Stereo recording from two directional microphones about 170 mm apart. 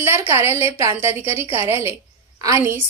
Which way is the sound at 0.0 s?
15° right (ahead or behind).